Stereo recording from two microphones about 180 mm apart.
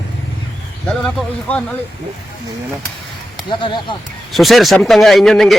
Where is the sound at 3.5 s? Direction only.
25° left (ahead or behind).